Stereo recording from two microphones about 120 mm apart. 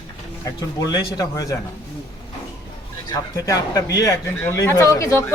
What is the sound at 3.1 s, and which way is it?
Speech, 30° left (ahead or behind).